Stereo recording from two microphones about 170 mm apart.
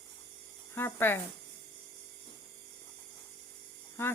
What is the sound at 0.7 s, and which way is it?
Speech, 15° left (ahead or behind).